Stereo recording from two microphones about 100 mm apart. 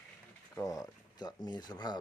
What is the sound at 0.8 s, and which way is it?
Speech, 45° left (ahead or behind).